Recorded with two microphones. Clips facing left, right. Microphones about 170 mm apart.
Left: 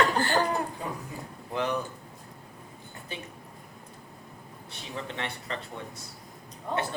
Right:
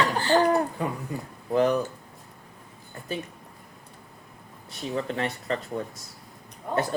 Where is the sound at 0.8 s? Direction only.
65° right (ahead or behind).